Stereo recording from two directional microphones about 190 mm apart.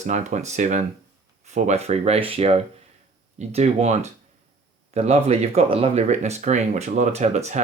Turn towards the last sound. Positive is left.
turn(degrees=-35)  # may be behind; listen again after turning